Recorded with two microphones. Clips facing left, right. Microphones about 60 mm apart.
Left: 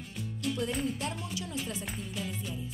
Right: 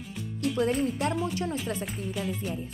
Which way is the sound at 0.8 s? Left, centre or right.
Right.